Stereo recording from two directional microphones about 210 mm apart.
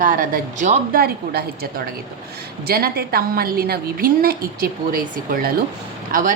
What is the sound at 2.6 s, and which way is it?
A woman's voice, 45° right (ahead or behind).